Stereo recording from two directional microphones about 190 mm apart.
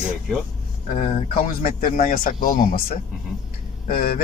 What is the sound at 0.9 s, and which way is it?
Speech, 35° left (ahead or behind).